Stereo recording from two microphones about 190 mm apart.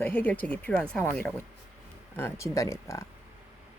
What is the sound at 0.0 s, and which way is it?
Speech, 10° left (ahead or behind).